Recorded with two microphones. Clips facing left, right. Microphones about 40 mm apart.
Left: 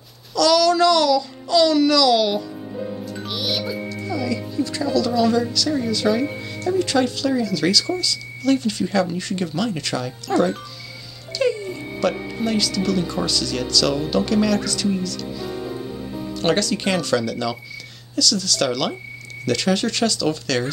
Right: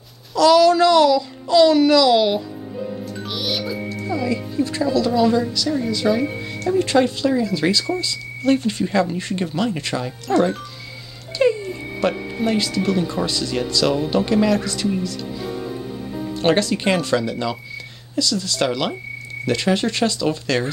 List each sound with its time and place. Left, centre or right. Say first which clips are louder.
0.3 s a child's voice: right 4 dB; centre
3.3 s music: even; centre
4.1 s speech: right 2 dB; right; by 6.5 s centre
6.6 s speech: right 2 dB; right
11.3 s a sound: right 3 dB; right
12.0 s speech: right 1 dB; right
16.3 s speech: right 2 dB; right